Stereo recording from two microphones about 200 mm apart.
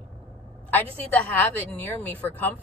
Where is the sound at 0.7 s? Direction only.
10° left (ahead or behind).